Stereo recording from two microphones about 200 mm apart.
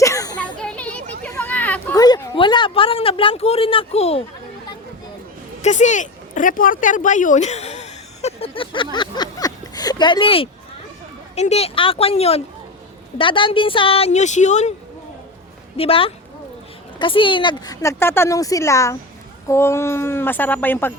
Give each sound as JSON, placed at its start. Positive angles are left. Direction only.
{"t": 0.0, "sound": "children playing", "side_deg": 15}
{"t": 0.6, "sound": "children playing", "side_deg": 5}
{"t": 2.0, "sound": "a sound", "side_deg": 20}
{"t": 5.6, "sound": "speech", "side_deg": 35}
{"t": 15.8, "sound": "a woman's voice", "side_deg": 30}